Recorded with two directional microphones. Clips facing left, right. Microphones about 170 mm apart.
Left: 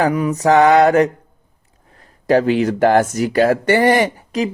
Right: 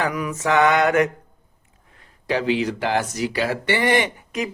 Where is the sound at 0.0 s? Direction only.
35° left (ahead or behind).